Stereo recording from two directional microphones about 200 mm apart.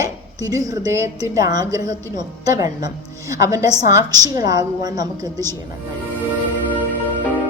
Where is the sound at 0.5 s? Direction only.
15° right (ahead or behind).